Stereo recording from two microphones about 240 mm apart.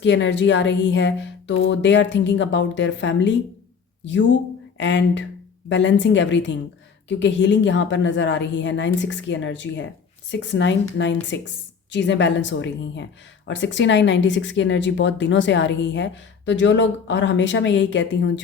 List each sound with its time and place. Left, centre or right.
0.0 s speech: left